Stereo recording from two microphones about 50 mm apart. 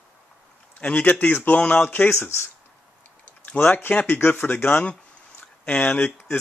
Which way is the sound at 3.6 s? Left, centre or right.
Left.